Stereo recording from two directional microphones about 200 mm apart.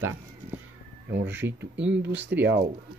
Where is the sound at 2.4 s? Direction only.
55° right (ahead or behind).